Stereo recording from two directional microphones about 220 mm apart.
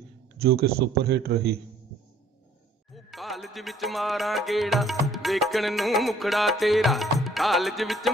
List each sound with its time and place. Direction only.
0.4 s a man's voice: 45° right (ahead or behind)
2.9 s music: centre (ahead or behind)